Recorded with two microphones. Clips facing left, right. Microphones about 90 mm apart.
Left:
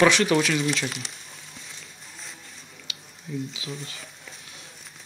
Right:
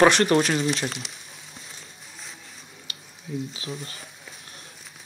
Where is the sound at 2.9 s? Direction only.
45° right (ahead or behind).